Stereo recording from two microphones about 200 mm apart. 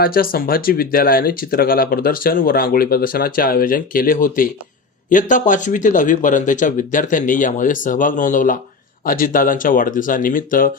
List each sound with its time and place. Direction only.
0.0 s speech: 45° left (ahead or behind)